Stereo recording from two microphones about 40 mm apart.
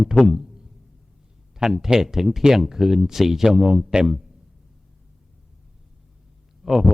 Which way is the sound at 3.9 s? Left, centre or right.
Centre.